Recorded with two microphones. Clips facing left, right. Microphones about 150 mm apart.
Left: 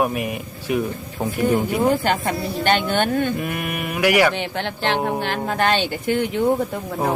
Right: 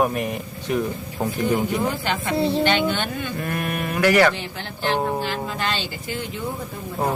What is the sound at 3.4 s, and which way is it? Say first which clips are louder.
Speech: even; 10° left (ahead or behind).